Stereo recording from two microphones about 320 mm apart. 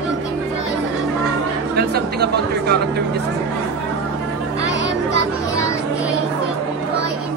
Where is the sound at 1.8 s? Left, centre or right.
Right.